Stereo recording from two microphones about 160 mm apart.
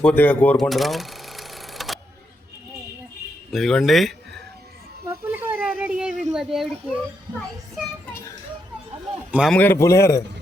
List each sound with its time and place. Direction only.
0.0 s a man's voice: 10° left (ahead or behind)
0.5 s cash register: centre (ahead or behind)
3.5 s a child's voice: centre (ahead or behind)
5.0 s a sound: 10° right (ahead or behind)
5.8 s a child's voice: 5° right (ahead or behind)
9.5 s a man's voice: 10° left (ahead or behind)